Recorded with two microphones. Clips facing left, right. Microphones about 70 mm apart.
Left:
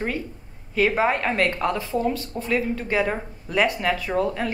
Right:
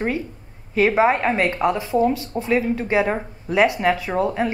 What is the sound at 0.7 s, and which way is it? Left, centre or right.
Speech, centre.